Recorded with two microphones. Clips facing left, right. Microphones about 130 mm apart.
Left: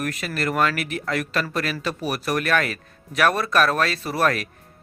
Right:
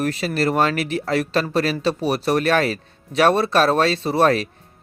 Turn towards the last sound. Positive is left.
turn(degrees=-25)  # may be behind; listen again after turning